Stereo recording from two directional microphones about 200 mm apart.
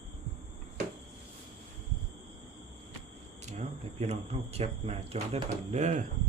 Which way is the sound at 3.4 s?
35° right (ahead or behind).